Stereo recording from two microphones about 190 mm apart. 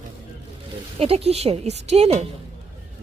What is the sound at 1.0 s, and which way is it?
A woman's voice, 30° right (ahead or behind).